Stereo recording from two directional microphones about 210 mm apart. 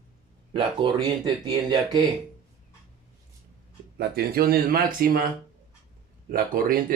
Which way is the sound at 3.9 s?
45° right (ahead or behind).